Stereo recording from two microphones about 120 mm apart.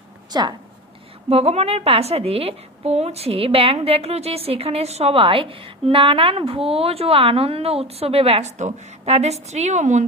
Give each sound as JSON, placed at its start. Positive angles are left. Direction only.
{"t": 0.3, "sound": "speech", "side_deg": -35}
{"t": 1.3, "sound": "a woman's voice", "side_deg": -60}